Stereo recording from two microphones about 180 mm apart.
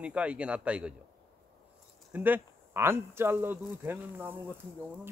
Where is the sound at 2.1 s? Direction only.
10° right (ahead or behind).